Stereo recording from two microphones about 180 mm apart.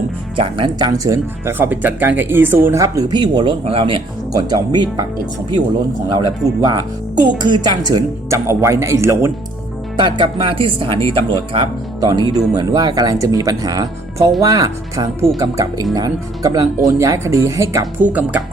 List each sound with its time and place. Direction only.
0.3 s speech: 30° right (ahead or behind)
6.1 s a woman's voice: 20° right (ahead or behind)
10.0 s a woman's voice: 25° right (ahead or behind); by 18.4 s 10° right (ahead or behind)